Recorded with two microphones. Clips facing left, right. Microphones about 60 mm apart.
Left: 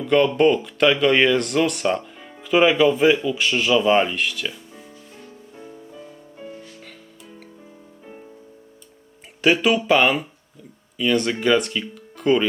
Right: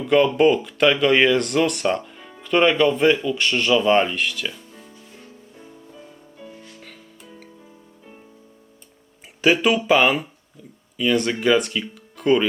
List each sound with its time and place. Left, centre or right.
0.0 s speech: centre
5.5 s music: centre
9.4 s speech: centre